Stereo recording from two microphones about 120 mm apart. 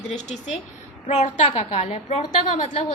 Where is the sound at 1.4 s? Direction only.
55° left (ahead or behind).